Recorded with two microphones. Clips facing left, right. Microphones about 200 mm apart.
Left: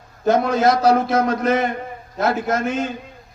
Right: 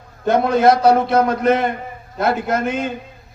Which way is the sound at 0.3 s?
60° right (ahead or behind).